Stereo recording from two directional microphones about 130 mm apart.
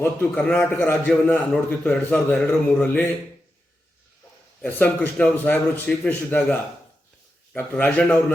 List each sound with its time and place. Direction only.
0.0 s a man's voice: 15° left (ahead or behind)
4.6 s a man's voice: 15° left (ahead or behind)